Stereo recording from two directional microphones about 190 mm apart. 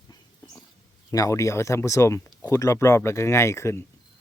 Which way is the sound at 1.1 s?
15° left (ahead or behind).